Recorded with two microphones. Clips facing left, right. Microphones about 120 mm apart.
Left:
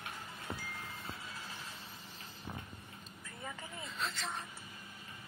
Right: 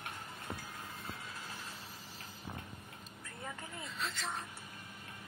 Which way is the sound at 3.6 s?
Centre (ahead or behind).